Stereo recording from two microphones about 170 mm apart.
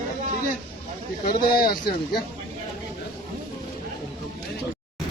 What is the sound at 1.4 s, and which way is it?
Speech, 25° left (ahead or behind).